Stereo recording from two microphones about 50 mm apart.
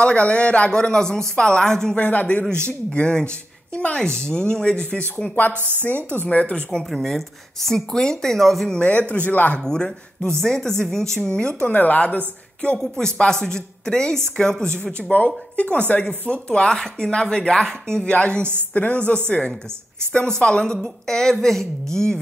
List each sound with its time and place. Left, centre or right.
0.0 s speech: left
2.0 s speech: left
6.2 s speech: left
6.9 s speech: centre
8.7 s speech: left
9.7 s speech: centre
11.1 s speech: left
11.7 s a woman's voice: left
12.7 s speech: centre
14.8 s speech: left; by 22.2 s centre